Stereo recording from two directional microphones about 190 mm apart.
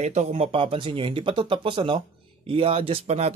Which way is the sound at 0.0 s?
35° right (ahead or behind).